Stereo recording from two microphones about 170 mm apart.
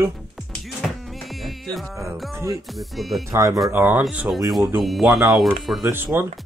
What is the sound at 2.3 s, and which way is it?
Speech, 15° right (ahead or behind).